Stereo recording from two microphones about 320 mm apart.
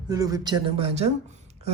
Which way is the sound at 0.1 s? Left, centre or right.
Centre.